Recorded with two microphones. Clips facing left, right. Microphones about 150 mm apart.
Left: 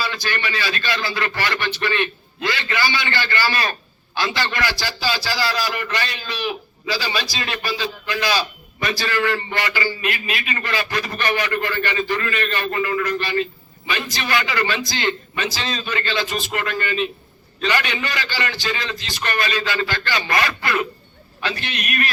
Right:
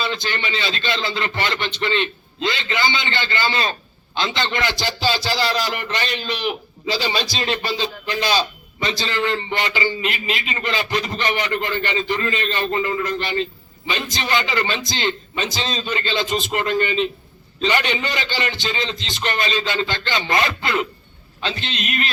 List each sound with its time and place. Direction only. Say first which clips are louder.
0.0 s a man's voice: right 1 dB; 20° right (ahead or behind)